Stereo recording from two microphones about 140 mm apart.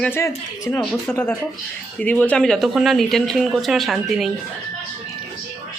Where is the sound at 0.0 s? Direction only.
20° left (ahead or behind); by 4.3 s centre (ahead or behind).